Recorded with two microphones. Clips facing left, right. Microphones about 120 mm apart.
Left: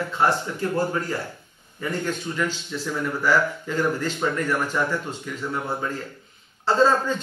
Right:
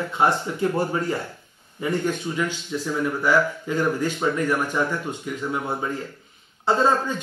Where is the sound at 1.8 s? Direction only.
15° right (ahead or behind).